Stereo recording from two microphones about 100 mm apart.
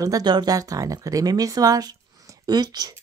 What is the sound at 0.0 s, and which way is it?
Speech, 40° right (ahead or behind).